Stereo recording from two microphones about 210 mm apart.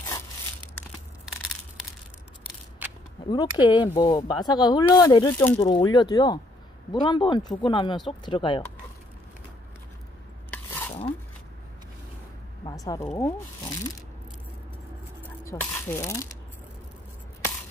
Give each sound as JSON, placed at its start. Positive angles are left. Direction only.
{"t": 3.3, "sound": "speech", "side_deg": 20}
{"t": 10.5, "sound": "a sound", "side_deg": 10}
{"t": 12.6, "sound": "speech", "side_deg": 15}
{"t": 15.4, "sound": "speech", "side_deg": 15}